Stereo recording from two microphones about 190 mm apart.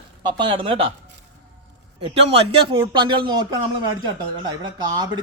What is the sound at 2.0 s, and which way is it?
Speech, 30° right (ahead or behind).